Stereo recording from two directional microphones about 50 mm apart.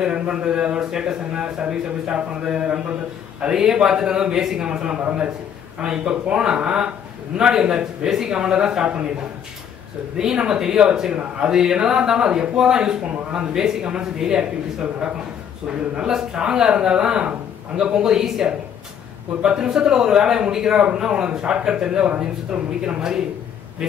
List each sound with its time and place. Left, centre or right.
0.0 s speech: centre
10.1 s speech: centre